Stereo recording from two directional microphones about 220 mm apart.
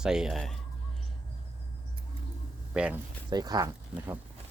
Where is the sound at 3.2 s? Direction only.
20° right (ahead or behind).